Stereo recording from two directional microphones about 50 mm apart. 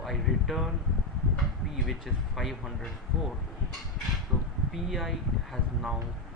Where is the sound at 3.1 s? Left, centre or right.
Centre.